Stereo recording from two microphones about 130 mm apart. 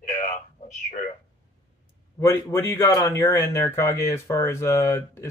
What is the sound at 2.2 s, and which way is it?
A man's voice, 15° left (ahead or behind).